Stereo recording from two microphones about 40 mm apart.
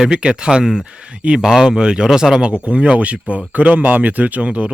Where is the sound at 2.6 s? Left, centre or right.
Right.